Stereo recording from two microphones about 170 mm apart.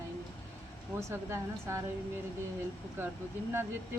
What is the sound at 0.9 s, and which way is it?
Speech, 15° right (ahead or behind).